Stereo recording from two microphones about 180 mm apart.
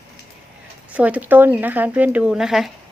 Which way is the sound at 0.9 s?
10° right (ahead or behind).